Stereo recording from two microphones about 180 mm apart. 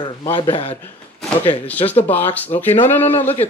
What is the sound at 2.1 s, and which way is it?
Speech, 10° left (ahead or behind).